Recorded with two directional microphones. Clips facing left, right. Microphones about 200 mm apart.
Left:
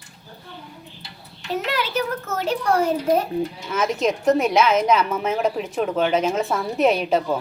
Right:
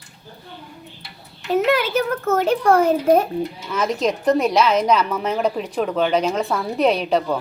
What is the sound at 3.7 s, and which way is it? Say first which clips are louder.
A woman's voice: right 1 dB; 5° left (ahead or behind).